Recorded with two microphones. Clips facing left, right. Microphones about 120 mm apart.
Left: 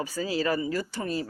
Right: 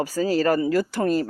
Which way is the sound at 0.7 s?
90° right.